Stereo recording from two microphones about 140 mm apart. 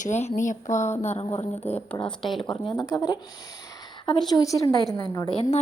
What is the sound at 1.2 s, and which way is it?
A woman's voice, 40° left (ahead or behind).